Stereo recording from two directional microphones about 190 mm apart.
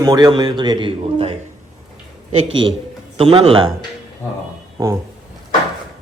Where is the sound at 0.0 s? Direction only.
20° right (ahead or behind).